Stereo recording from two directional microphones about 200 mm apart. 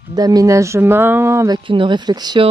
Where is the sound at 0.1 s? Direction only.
20° right (ahead or behind).